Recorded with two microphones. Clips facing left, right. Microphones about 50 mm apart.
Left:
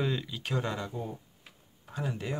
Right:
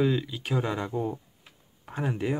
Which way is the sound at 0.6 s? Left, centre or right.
Right.